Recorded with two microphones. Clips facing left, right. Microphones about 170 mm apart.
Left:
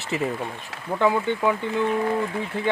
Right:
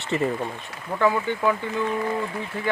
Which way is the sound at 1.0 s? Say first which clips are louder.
Even; 20° left (ahead or behind).